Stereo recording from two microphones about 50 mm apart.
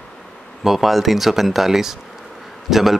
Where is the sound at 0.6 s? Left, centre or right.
Centre.